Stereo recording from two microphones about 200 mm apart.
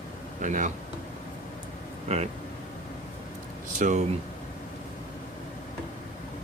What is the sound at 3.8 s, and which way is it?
Speech, 35° right (ahead or behind).